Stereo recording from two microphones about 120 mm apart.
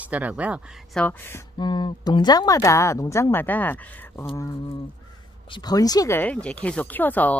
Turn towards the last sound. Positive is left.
turn(degrees=15)  # may be behind; listen again after turning